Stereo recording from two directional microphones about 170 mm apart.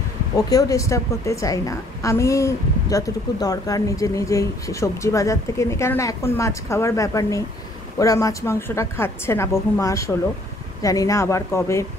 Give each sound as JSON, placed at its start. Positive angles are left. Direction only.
{"t": 0.5, "sound": "a woman's voice", "side_deg": 20}